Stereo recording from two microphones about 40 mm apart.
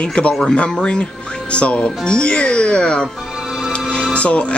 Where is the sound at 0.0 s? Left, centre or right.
Left.